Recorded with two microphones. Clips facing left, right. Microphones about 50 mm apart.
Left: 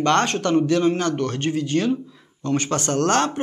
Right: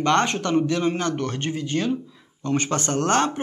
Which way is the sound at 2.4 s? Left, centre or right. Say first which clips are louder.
Left 1 dB; right.